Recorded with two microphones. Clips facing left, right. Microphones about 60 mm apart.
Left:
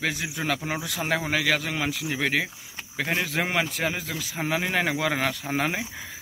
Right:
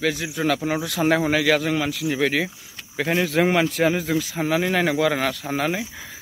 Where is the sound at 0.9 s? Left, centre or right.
Centre.